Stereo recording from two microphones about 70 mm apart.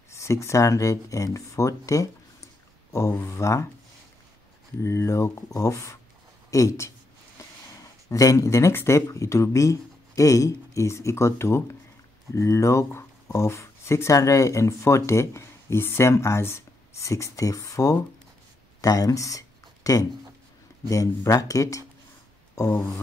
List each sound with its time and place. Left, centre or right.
0.1 s speech: left
4.8 s speech: left
8.1 s speech: left
21.4 s speech: left